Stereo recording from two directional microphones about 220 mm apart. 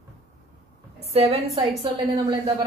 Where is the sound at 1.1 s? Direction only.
30° right (ahead or behind).